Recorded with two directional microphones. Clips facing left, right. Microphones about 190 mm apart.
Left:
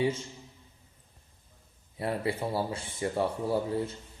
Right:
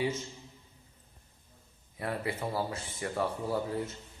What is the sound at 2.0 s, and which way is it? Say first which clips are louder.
Speech: left 4 dB; 25° left (ahead or behind).